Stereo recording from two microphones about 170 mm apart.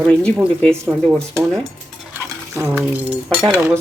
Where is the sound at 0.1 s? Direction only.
5° left (ahead or behind).